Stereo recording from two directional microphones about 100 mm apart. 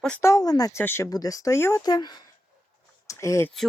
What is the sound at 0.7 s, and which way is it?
Speech, 25° left (ahead or behind).